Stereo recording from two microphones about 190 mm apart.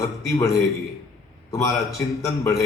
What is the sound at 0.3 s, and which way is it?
A man's voice, 15° left (ahead or behind).